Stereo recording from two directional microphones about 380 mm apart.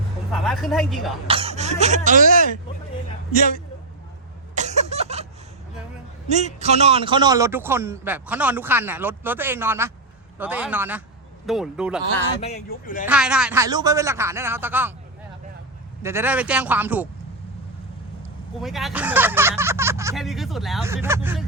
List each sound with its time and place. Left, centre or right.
0.3 s a man's voice: centre
1.3 s speech: centre
4.5 s a sound: centre
6.2 s a man's voice: centre
12.4 s speech: centre
13.1 s a man's voice: centre
16.0 s a man's voice: centre
18.6 s a man's voice: centre